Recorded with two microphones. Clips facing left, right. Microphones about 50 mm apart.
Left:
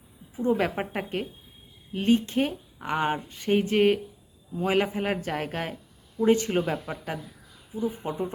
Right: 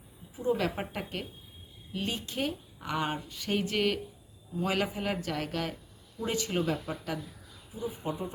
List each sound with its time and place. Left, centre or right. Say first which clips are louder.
0.3 s speech: left 5 dB; left